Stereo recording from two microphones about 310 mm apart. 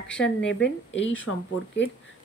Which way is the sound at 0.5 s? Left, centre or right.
Left.